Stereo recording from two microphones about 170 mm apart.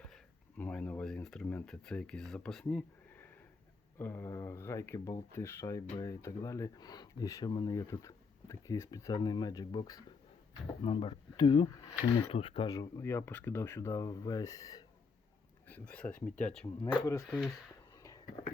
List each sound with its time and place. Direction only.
0.0 s speech: 5° left (ahead or behind)
15.6 s speech: 10° left (ahead or behind)
16.8 s speech: 15° left (ahead or behind)